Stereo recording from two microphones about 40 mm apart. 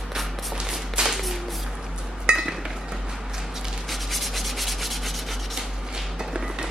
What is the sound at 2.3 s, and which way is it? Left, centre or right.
Chink, right.